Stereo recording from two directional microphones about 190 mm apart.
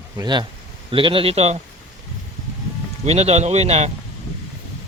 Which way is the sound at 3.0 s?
35° right (ahead or behind).